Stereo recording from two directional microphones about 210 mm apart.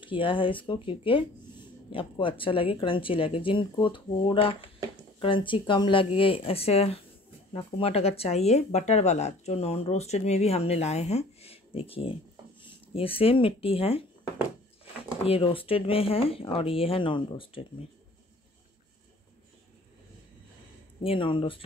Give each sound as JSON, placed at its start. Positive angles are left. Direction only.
{"t": 0.0, "sound": "speech", "side_deg": 25}
{"t": 15.2, "sound": "speech", "side_deg": 25}
{"t": 21.0, "sound": "speech", "side_deg": 25}